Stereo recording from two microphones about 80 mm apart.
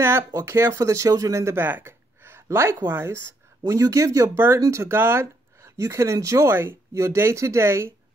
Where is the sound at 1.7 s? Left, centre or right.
Right.